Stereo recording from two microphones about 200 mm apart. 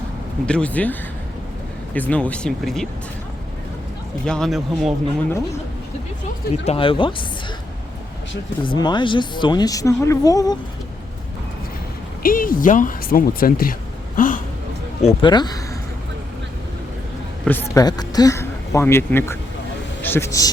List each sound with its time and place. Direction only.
0.4 s speech: 5° left (ahead or behind)
4.3 s speech: centre (ahead or behind)
6.7 s speech: 25° left (ahead or behind)
8.6 s speech: 25° left (ahead or behind)
12.2 s speech: 45° left (ahead or behind)
15.0 s speech: 25° left (ahead or behind)
17.4 s a sound: 10° left (ahead or behind)
17.8 s a man's voice: 20° left (ahead or behind)